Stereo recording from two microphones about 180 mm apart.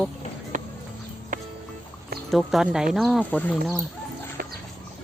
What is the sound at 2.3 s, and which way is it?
Speech, centre (ahead or behind).